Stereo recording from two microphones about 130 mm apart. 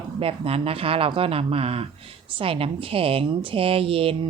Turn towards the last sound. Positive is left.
turn(degrees=-45)  # may be behind; listen again after turning